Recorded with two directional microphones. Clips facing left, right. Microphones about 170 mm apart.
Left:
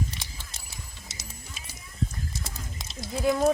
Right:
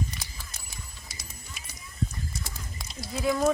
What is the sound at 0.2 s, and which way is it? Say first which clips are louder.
Mechanisms: even; 25° left (ahead or behind).